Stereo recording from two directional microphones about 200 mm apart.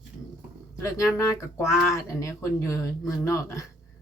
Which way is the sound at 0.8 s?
15° left (ahead or behind).